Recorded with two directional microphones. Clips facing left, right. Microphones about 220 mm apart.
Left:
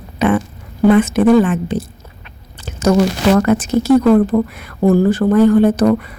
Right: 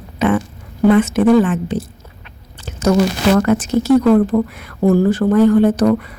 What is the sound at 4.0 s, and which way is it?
Speech, 10° left (ahead or behind).